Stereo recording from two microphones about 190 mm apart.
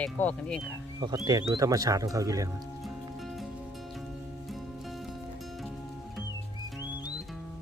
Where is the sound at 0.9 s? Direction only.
20° right (ahead or behind).